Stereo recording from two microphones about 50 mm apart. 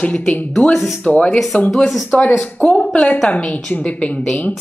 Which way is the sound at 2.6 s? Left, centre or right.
Left.